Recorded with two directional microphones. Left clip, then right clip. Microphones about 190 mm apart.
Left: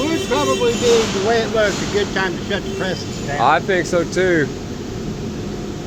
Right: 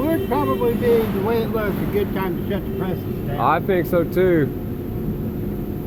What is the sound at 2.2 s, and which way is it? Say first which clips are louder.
Speech: left 4 dB; 20° right (ahead or behind).